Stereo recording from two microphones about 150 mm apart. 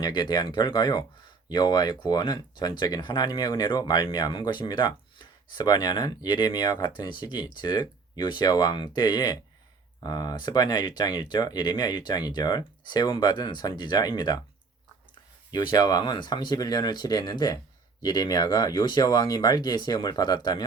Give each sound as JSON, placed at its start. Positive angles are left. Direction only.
{"t": 0.0, "sound": "speech", "side_deg": 30}
{"t": 15.5, "sound": "speech", "side_deg": 25}